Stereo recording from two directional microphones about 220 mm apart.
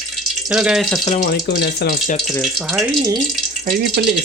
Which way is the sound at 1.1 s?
40° left (ahead or behind).